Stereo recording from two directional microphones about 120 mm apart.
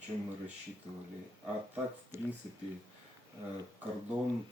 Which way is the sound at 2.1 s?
20° right (ahead or behind).